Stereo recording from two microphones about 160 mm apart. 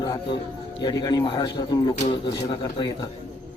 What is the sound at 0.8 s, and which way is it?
Speech, 25° left (ahead or behind).